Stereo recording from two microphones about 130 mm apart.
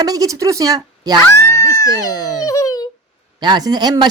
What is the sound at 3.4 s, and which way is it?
Speech, 35° right (ahead or behind).